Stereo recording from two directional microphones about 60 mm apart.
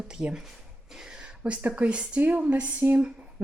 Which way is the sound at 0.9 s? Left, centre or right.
Centre.